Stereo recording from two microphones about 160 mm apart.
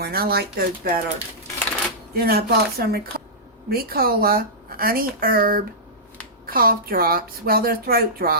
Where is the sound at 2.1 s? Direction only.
75° right (ahead or behind).